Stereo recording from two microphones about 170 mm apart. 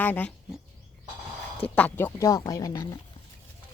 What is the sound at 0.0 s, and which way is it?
Speech, 10° left (ahead or behind).